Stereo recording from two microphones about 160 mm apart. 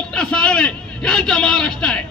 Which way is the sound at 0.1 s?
5° left (ahead or behind).